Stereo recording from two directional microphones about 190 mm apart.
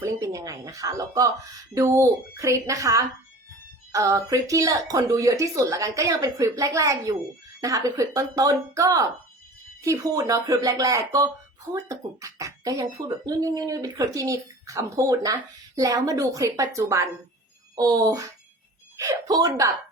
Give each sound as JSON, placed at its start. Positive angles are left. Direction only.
{"t": 0.0, "sound": "speech", "side_deg": -15}